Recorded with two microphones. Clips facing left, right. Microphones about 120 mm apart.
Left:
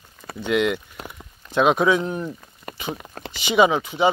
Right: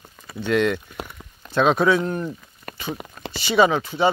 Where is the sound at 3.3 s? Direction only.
15° left (ahead or behind).